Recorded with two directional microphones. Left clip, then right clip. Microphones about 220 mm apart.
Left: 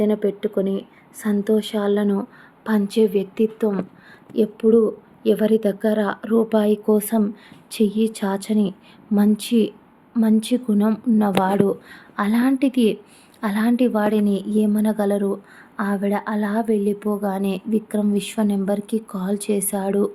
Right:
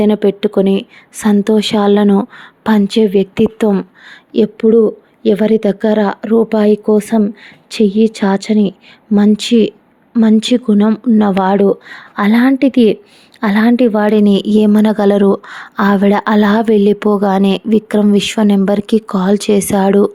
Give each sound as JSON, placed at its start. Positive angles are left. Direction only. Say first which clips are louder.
{"t": 0.0, "sound": "a woman's voice", "louder": "right 8 dB", "side_deg": -40}